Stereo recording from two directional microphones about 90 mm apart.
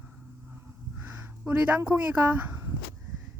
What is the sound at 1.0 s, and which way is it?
Speech, 25° right (ahead or behind).